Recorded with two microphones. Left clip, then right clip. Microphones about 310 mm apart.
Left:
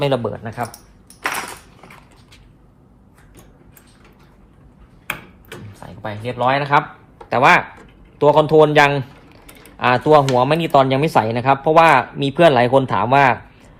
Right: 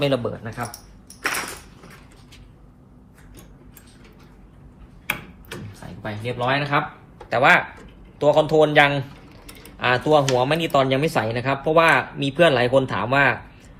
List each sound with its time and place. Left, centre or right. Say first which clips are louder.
0.0 s speech: left 3 dB; left
6.0 s speech: left 5 dB; centre